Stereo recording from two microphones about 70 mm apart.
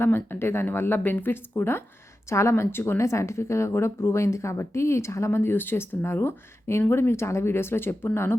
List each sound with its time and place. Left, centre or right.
0.0 s speech: left